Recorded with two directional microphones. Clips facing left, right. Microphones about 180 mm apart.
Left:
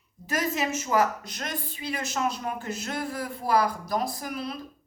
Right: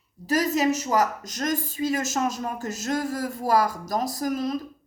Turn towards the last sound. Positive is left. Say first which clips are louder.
# right 7 dB
turn(degrees=-40)  # may be behind; listen again after turning